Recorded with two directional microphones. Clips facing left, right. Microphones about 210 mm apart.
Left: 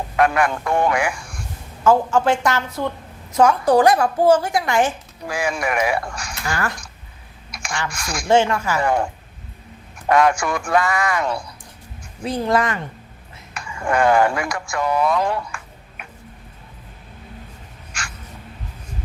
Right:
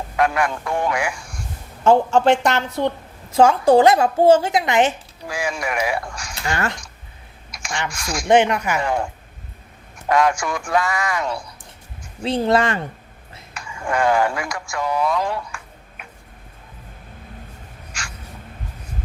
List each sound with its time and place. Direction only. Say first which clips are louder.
0.2 s a man's voice: left 2 dB; 55° left (ahead or behind)
1.8 s a woman's voice: right 2 dB; 25° right (ahead or behind)
5.3 s a man's voice: left 2 dB; 55° left (ahead or behind)
6.4 s a woman's voice: right 1 dB; 25° right (ahead or behind)
7.5 s a sound: left 3 dB; 60° left (ahead or behind)
7.9 s a man's voice: right 1 dB; 55° left (ahead or behind)
8.3 s a woman's voice: right 1 dB; 20° right (ahead or behind)
10.1 s a man's voice: left 2 dB; 55° left (ahead or behind)
12.2 s a woman's voice: right 2 dB; 25° right (ahead or behind)
13.5 s speech: left 3 dB; 60° left (ahead or behind)
17.9 s crow: left 2 dB; 55° left (ahead or behind)